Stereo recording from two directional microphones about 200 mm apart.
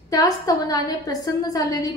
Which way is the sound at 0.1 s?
15° left (ahead or behind).